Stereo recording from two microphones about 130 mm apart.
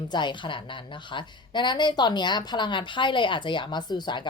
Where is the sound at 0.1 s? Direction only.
35° left (ahead or behind).